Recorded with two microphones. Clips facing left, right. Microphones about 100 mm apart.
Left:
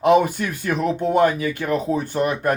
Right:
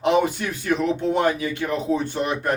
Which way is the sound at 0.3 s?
45° left (ahead or behind).